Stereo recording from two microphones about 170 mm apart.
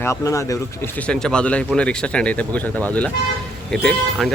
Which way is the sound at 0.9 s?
5° left (ahead or behind).